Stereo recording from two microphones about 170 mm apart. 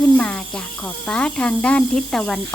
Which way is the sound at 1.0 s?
5° left (ahead or behind).